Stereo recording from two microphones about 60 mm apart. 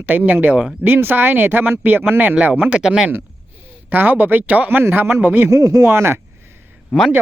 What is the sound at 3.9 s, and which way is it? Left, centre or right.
Speech, right.